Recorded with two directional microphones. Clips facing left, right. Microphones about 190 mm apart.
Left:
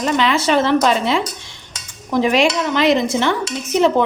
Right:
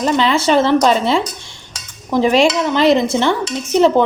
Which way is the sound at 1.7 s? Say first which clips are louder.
Right 2 dB; 30° right (ahead or behind).